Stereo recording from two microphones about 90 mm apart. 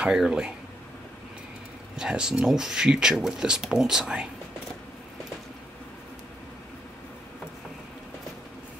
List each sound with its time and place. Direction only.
0.0 s speech: 10° right (ahead or behind)
2.0 s speech: 5° right (ahead or behind)